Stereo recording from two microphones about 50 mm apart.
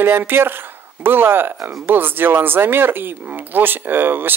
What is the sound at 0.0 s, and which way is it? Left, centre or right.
Speech, right.